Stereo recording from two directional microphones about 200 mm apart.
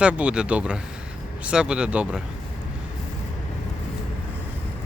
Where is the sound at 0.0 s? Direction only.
5° right (ahead or behind).